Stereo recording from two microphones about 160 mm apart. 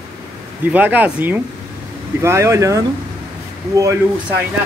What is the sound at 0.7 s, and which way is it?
Speech, 10° right (ahead or behind).